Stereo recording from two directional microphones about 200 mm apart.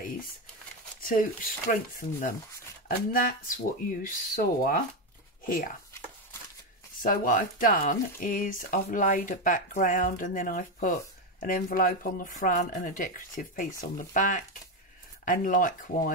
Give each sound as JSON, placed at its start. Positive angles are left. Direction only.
{"t": 1.0, "sound": "speech", "side_deg": 45}
{"t": 7.0, "sound": "speech", "side_deg": 45}